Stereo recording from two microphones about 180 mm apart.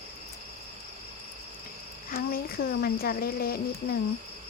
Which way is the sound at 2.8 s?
55° left (ahead or behind).